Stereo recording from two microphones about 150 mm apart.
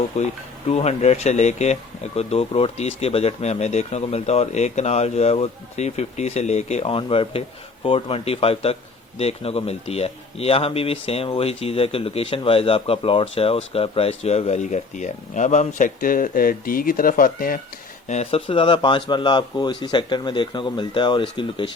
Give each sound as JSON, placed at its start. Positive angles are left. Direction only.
{"t": 0.1, "sound": "speech", "side_deg": 45}
{"t": 18.1, "sound": "speech", "side_deg": 45}